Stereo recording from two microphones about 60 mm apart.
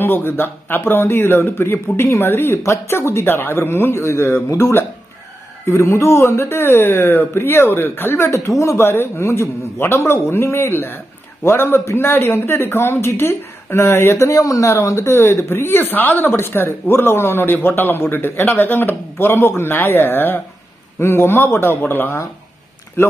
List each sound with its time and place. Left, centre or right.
0.0 s speech: left
8.7 s speech: left
14.3 s speech: left
15.0 s speech: left